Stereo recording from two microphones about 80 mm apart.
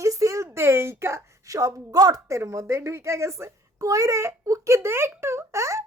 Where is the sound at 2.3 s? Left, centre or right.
Right.